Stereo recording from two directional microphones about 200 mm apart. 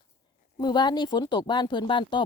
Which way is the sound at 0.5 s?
20° left (ahead or behind).